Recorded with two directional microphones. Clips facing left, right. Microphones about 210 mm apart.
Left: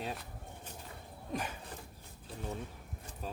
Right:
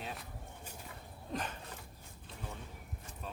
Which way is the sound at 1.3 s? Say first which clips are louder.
Left 1 dB; 10° left (ahead or behind).